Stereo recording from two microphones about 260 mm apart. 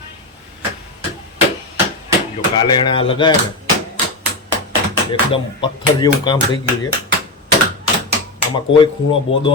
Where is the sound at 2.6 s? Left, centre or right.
Centre.